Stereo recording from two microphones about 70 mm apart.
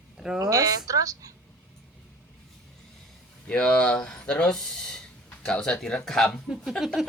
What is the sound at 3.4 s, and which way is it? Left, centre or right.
Speech, centre.